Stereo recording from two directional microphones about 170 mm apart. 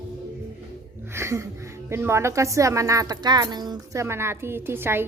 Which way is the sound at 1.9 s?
15° right (ahead or behind).